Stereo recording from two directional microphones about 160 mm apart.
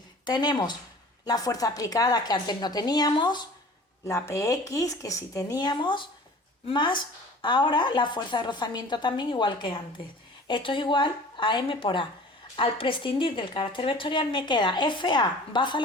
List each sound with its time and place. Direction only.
0.3 s a woman's voice: 25° left (ahead or behind)
4.0 s a woman's voice: 15° left (ahead or behind)